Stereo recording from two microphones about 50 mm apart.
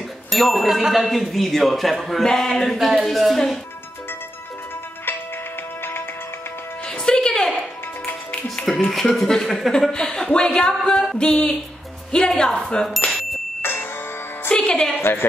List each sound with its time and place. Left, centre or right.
0.3 s a man's voice: centre
2.9 s a man's voice: centre
6.9 s music: centre
8.0 s music: left
8.9 s a man's voice: centre
13.0 s bicycle bell: left
13.6 s music: left
14.5 s music: centre
15.0 s a woman's voice: left